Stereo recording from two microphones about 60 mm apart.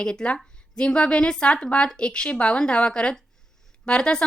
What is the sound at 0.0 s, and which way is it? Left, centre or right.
A woman's voice, centre.